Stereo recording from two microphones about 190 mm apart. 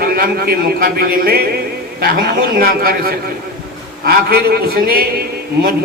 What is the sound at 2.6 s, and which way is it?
A man's voice, 50° right (ahead or behind).